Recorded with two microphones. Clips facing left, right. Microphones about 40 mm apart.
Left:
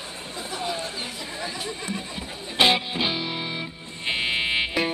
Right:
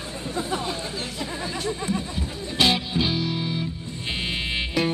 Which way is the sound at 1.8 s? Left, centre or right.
Centre.